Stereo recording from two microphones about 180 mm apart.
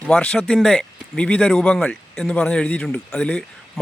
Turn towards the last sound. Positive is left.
turn(degrees=5)  # may be behind; listen again after turning